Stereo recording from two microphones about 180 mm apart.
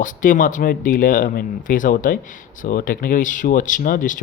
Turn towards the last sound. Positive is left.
turn(degrees=45)  # may be behind; listen again after turning